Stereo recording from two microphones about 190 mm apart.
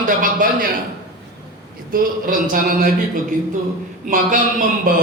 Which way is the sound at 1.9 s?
50° right (ahead or behind).